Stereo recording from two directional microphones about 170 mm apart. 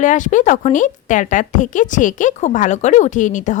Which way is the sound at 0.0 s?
50° left (ahead or behind).